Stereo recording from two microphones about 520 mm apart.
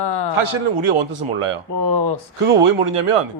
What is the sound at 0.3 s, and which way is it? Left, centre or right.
Speech, right.